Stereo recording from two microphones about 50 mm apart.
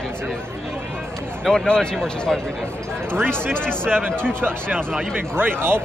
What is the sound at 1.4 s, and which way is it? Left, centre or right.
Speech, centre.